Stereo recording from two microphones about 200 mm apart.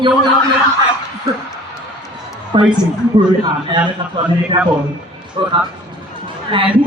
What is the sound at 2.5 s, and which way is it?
Speech, 25° right (ahead or behind).